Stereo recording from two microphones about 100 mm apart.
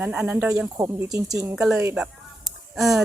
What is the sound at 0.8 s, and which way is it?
Speech, 35° right (ahead or behind).